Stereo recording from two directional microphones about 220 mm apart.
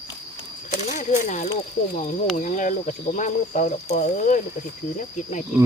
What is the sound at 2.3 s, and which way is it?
Speech, 35° left (ahead or behind).